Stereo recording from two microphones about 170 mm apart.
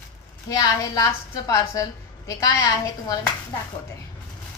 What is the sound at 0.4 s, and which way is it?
A woman's voice, 20° left (ahead or behind).